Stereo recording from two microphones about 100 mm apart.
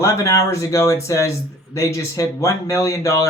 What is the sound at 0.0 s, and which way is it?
Speech, 30° left (ahead or behind).